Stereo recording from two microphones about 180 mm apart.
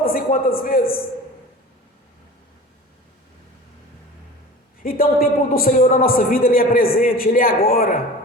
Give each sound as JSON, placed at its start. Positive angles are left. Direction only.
{"t": 0.0, "sound": "a man's voice", "side_deg": 50}
{"t": 4.8, "sound": "a man's voice", "side_deg": 55}